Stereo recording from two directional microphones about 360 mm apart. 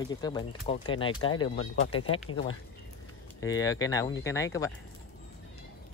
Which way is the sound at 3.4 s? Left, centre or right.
Centre.